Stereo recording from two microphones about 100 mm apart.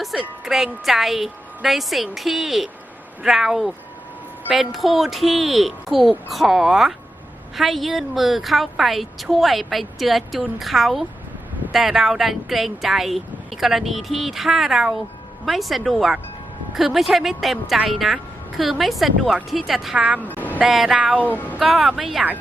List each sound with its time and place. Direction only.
0.0 s a woman's voice: 5° right (ahead or behind)
20.0 s speech: 15° right (ahead or behind)
20.2 s a sound: 20° left (ahead or behind)
20.6 s a woman's voice: 5° right (ahead or behind)
21.2 s speech: 15° left (ahead or behind)
21.6 s a woman's voice: centre (ahead or behind)